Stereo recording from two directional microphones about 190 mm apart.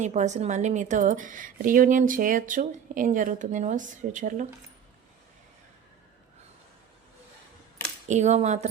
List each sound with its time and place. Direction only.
0.0 s a woman's voice: 40° right (ahead or behind)
8.0 s a woman's voice: 40° right (ahead or behind)